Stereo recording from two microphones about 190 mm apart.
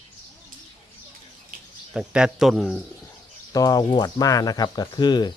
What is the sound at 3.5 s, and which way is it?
Speech, 20° left (ahead or behind).